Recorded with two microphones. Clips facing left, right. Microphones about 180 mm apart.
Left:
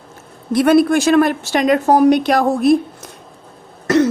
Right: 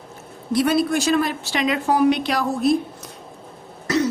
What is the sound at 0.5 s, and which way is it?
A woman's voice, 55° left (ahead or behind).